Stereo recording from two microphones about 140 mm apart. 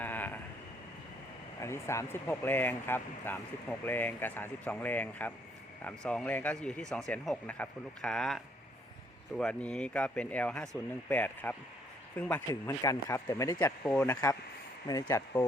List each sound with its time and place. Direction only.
0.0 s a sound: 10° left (ahead or behind)
1.6 s speech: 20° left (ahead or behind); by 8.4 s 5° left (ahead or behind)
9.4 s speech: 10° left (ahead or behind)
12.5 s speech: 25° left (ahead or behind)
14.8 s speech: 25° left (ahead or behind)